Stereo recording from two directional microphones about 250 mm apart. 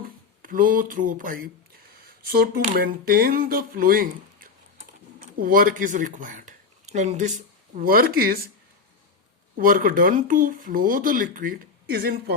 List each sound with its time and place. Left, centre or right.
0.4 s speech: right
9.6 s speech: right